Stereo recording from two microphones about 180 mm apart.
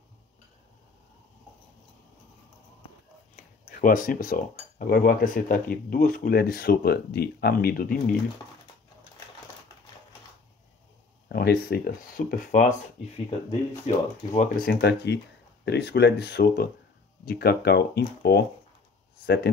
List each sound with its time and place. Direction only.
3.3 s speech: 50° left (ahead or behind)
11.2 s speech: 60° left (ahead or behind)